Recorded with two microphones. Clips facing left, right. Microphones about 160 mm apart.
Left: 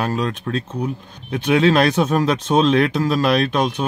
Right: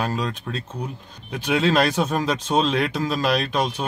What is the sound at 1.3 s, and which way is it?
Speech, 60° left (ahead or behind).